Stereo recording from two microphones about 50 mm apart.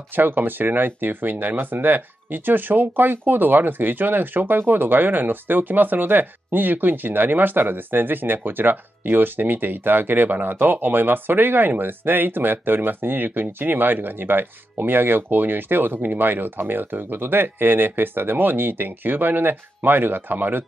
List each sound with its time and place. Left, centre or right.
0.1 s speech: right